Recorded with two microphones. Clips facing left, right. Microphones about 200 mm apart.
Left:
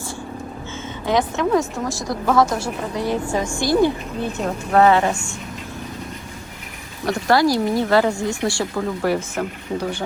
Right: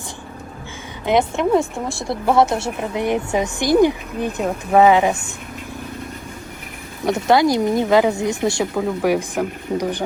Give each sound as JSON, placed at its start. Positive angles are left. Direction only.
{"t": 1.0, "sound": "a woman's voice", "side_deg": -20}
{"t": 7.1, "sound": "a woman's voice", "side_deg": -20}